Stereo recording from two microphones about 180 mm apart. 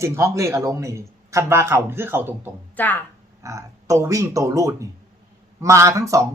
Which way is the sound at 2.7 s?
10° left (ahead or behind).